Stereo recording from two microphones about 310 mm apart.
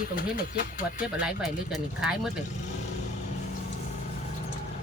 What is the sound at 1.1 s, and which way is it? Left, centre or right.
Speech, centre.